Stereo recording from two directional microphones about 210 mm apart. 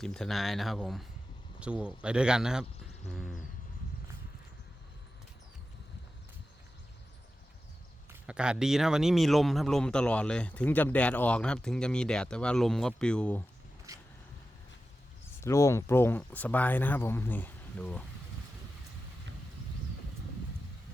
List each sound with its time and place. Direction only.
0.0 s a man's voice: centre (ahead or behind)
8.1 s a man's voice: 5° right (ahead or behind)
13.9 s boat: 15° right (ahead or behind)
15.4 s speech: 15° left (ahead or behind)